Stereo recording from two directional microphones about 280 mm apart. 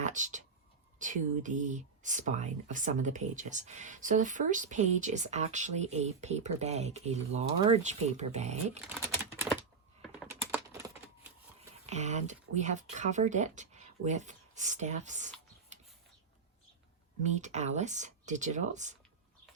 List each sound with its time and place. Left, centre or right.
0.0 s speech: right
10.0 s computer keyboard: centre
11.9 s speech: right
17.2 s speech: right